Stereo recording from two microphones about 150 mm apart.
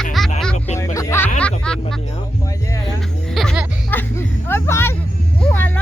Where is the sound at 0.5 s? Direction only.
50° left (ahead or behind).